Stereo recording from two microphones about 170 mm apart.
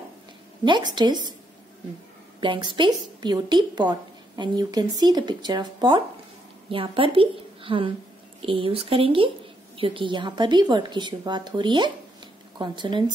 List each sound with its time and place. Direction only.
0.7 s a woman's voice: 25° right (ahead or behind)
2.4 s a woman's voice: 30° right (ahead or behind)